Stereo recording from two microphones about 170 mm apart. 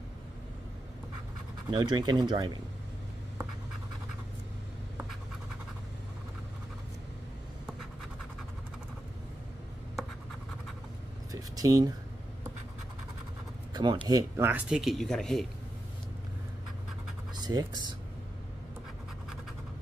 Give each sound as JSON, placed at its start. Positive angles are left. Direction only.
{"t": 1.7, "sound": "speech", "side_deg": -25}
{"t": 11.5, "sound": "speech", "side_deg": -20}
{"t": 13.7, "sound": "speech", "side_deg": -25}
{"t": 17.4, "sound": "a sound", "side_deg": -25}